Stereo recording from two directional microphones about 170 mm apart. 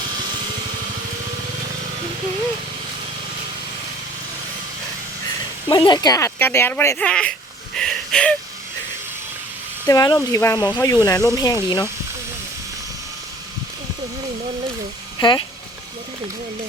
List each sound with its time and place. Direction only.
5.6 s speech: 25° left (ahead or behind); by 7.3 s 5° left (ahead or behind)
7.8 s a sound: 5° left (ahead or behind)
9.8 s speech: 25° left (ahead or behind)
15.2 s speech: 30° left (ahead or behind)